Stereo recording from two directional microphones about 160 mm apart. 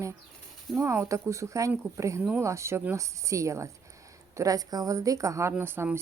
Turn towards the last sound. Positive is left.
turn(degrees=-15)  # may be behind; listen again after turning